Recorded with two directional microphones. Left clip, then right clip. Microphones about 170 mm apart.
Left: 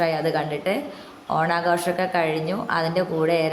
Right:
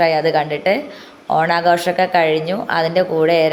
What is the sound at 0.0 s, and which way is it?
A woman's voice, 15° right (ahead or behind).